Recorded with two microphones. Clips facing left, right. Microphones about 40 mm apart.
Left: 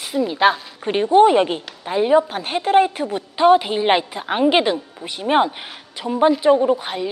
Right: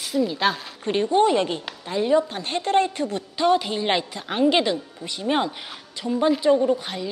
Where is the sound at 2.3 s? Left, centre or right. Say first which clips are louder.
Left 5 dB; centre.